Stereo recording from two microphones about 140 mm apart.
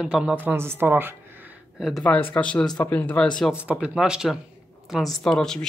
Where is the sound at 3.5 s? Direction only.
10° right (ahead or behind).